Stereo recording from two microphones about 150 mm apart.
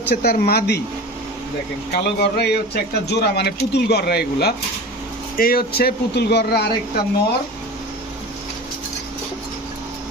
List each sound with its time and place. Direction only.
0.1 s speech: 90° left
1.9 s speech: 90° left